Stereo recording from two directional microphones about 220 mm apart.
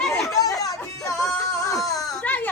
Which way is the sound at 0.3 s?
15° left (ahead or behind).